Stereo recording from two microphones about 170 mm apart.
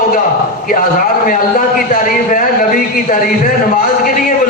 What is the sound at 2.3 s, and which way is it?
A man's voice, 55° left (ahead or behind).